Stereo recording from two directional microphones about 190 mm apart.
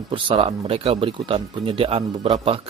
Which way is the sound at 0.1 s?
30° right (ahead or behind).